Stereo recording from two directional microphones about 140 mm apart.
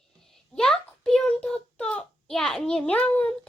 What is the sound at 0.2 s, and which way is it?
A child's voice, 5° left (ahead or behind).